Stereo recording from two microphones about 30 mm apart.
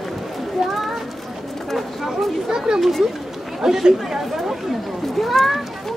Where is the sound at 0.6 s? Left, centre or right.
Centre.